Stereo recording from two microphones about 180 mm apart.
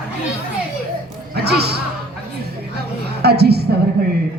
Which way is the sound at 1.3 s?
60° right (ahead or behind).